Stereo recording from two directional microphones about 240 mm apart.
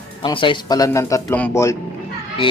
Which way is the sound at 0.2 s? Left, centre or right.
Left.